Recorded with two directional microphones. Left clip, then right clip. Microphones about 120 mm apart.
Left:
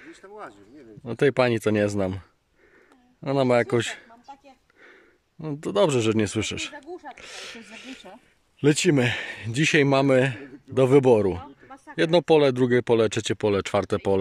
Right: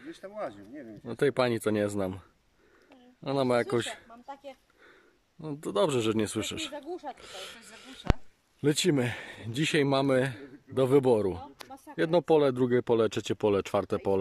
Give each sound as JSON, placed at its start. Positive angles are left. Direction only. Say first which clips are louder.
{"t": 0.2, "sound": "speech", "louder": "right 4 dB", "side_deg": -45}
{"t": 1.0, "sound": "speech", "louder": "left 6 dB", "side_deg": -5}
{"t": 5.4, "sound": "speech", "louder": "left 6 dB", "side_deg": -5}